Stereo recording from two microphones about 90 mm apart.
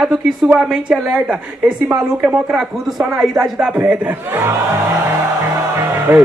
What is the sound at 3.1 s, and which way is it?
Music, 10° right (ahead or behind).